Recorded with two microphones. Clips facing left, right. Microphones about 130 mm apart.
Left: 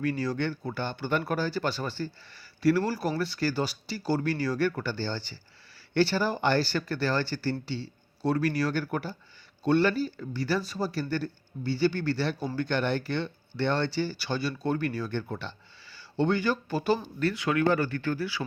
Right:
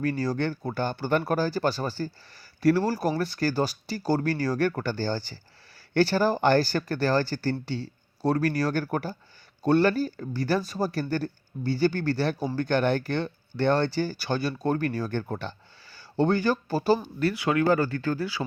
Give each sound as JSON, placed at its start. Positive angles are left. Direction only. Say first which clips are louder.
{"t": 0.0, "sound": "speech", "louder": "right 2 dB", "side_deg": -40}